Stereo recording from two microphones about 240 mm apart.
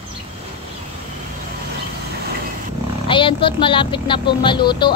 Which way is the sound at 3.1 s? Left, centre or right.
Left.